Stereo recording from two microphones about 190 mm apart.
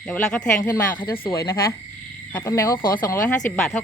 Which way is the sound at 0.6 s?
20° left (ahead or behind).